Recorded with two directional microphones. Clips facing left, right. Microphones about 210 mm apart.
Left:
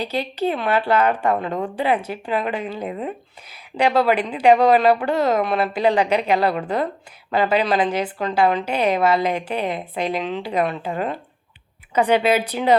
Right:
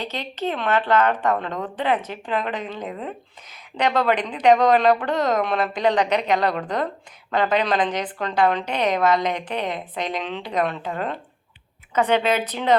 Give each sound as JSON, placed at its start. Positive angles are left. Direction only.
{"t": 0.0, "sound": "a woman's voice", "side_deg": 10}